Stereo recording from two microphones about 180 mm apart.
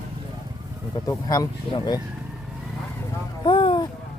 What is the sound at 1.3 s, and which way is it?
Speech, 20° left (ahead or behind).